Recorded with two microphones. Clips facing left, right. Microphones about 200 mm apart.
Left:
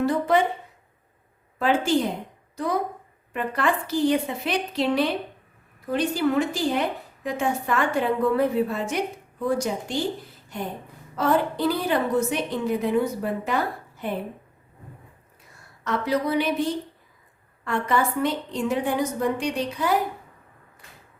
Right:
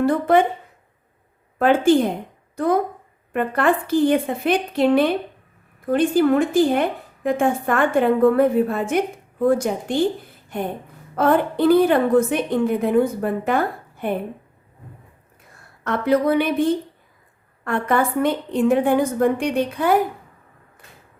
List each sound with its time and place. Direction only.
0.0 s speech: 55° right (ahead or behind)
1.5 s a woman's voice: 55° right (ahead or behind)
15.8 s a woman's voice: 55° right (ahead or behind)